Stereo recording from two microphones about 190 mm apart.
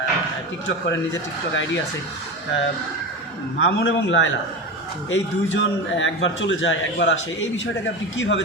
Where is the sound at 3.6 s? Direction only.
75° left (ahead or behind).